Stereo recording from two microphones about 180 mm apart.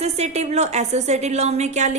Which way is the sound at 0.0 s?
35° right (ahead or behind).